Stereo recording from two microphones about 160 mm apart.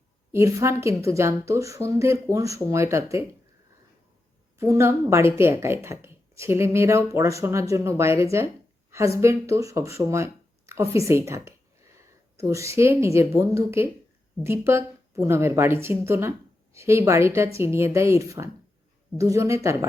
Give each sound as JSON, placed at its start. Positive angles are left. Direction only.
{"t": 0.3, "sound": "speech", "side_deg": -15}
{"t": 4.5, "sound": "a woman's voice", "side_deg": -15}